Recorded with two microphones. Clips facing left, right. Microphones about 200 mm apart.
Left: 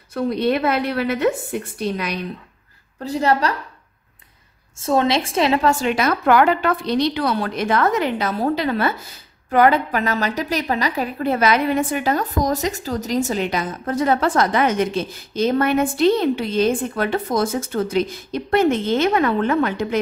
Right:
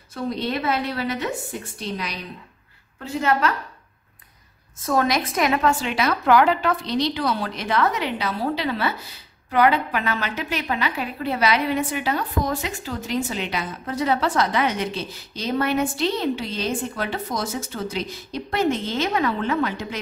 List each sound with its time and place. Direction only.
0.1 s a woman's voice: 60° left (ahead or behind)
3.0 s a woman's voice: 35° left (ahead or behind)
4.7 s a woman's voice: 25° left (ahead or behind)
5.7 s a woman's voice: 45° left (ahead or behind)